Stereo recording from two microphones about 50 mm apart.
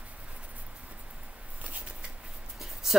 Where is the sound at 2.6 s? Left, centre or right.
Centre.